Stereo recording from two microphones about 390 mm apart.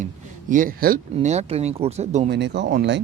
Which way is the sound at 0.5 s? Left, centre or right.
Right.